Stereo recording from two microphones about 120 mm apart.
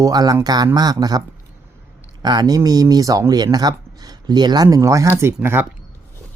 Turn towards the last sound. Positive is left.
turn(degrees=-20)  # may be behind; listen again after turning